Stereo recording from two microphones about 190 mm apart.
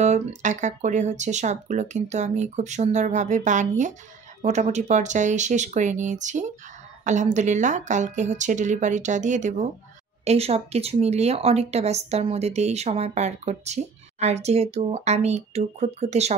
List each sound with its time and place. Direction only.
0.0 s speech: 40° right (ahead or behind)